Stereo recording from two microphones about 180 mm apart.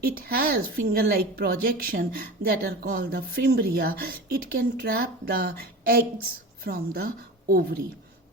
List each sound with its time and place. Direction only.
0.0 s a woman's voice: 55° right (ahead or behind)